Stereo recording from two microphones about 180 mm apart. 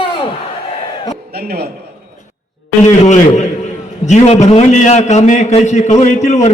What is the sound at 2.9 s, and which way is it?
A man's voice, 40° left (ahead or behind).